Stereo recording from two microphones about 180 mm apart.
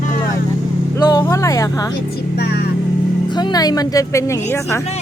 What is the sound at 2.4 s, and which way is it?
Speech, 60° left (ahead or behind).